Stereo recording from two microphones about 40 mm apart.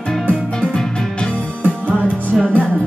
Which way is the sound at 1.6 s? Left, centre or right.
Right.